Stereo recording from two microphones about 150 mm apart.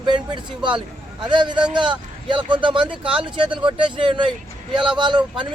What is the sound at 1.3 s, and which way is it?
A man's voice, 30° right (ahead or behind).